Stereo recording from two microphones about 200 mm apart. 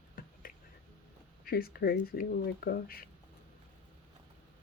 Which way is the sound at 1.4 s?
50° left (ahead or behind).